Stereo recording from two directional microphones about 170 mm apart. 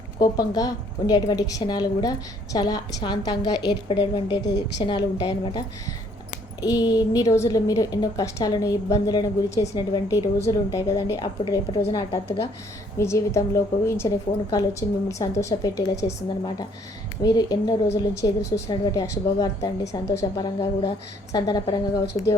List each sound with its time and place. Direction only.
0.2 s a woman's voice: 20° left (ahead or behind)
4.3 s a woman's voice: 90° left
4.8 s a woman's voice: 25° left (ahead or behind)
17.2 s a woman's voice: 20° left (ahead or behind)